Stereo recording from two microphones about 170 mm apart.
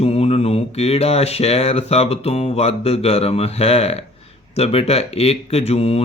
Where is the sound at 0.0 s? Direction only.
35° left (ahead or behind).